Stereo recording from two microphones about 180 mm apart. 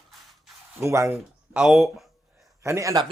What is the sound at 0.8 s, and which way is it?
Speech, 15° right (ahead or behind).